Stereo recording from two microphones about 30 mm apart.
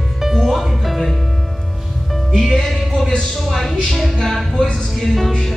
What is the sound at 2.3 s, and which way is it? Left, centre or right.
Music, centre.